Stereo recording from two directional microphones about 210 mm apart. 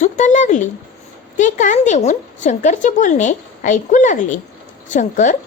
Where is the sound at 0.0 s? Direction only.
35° left (ahead or behind).